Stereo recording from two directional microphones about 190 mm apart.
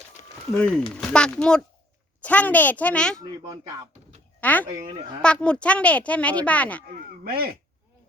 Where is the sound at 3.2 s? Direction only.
20° right (ahead or behind).